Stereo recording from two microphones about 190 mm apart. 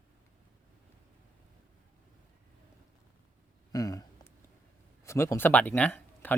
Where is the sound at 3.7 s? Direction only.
20° left (ahead or behind).